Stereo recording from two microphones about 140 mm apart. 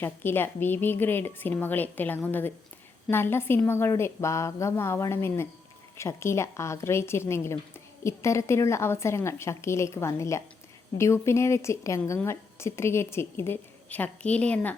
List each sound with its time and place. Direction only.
0.0 s a woman's voice: 15° left (ahead or behind)